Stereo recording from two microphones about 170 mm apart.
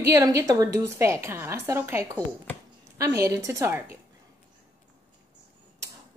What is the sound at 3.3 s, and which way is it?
Speech, 20° right (ahead or behind).